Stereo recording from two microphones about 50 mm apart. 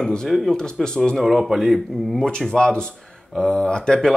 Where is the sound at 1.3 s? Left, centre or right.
Centre.